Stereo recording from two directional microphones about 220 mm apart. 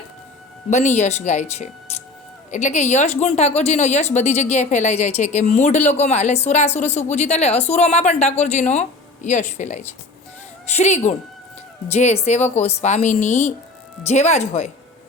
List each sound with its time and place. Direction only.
0.7 s a woman's voice: 30° left (ahead or behind)